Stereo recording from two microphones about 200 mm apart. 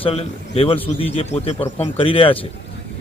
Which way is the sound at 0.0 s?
30° left (ahead or behind).